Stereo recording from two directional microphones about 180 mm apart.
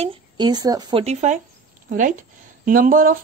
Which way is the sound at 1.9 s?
45° right (ahead or behind).